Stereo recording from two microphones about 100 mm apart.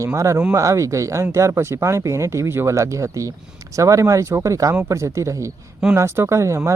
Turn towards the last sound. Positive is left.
turn(degrees=-30)  # may be behind; listen again after turning